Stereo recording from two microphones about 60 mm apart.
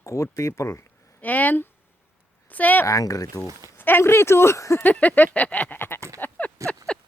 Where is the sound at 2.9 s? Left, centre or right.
Left.